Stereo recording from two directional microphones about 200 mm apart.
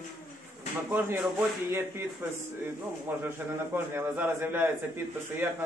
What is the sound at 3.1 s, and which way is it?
Speech, 10° right (ahead or behind).